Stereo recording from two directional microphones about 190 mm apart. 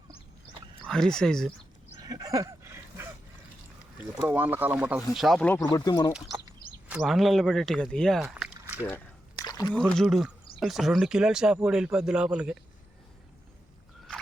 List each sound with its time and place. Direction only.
0.9 s speech: 5° left (ahead or behind)
2.0 s a sound: 20° right (ahead or behind)
4.3 s speech: 10° right (ahead or behind)
5.7 s speech: 20° left (ahead or behind)
7.0 s speech: centre (ahead or behind)
9.4 s a sound: 20° left (ahead or behind)
9.9 s speech: centre (ahead or behind)